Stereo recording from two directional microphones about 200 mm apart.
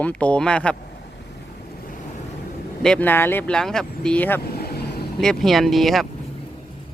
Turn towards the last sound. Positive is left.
turn(degrees=0)  # may be behind; listen again after turning